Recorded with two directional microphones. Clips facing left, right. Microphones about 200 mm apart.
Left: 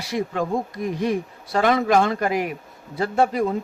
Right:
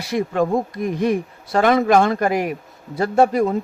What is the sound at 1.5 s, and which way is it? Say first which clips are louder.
Speech: right 3 dB; 50° right (ahead or behind).